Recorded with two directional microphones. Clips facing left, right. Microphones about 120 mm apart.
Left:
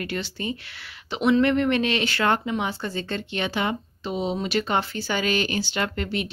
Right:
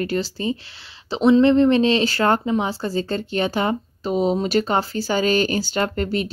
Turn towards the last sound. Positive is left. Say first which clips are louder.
# right 5 dB
turn(degrees=-40)  # may be behind; listen again after turning